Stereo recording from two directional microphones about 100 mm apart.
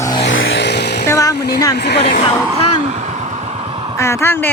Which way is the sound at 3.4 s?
80° right.